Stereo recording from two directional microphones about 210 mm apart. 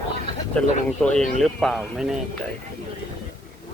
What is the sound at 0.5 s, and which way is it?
Speech, 5° left (ahead or behind).